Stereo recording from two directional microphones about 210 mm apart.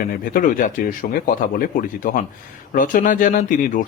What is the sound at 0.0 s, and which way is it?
Speech, 40° left (ahead or behind).